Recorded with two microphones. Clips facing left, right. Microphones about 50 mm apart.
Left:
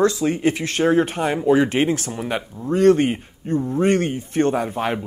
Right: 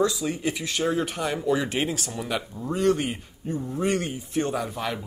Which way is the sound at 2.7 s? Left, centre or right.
Left.